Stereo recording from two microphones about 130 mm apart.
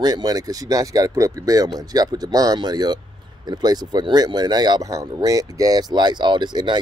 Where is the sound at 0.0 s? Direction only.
30° right (ahead or behind).